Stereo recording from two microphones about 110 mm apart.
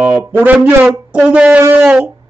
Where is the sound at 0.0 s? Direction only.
15° right (ahead or behind).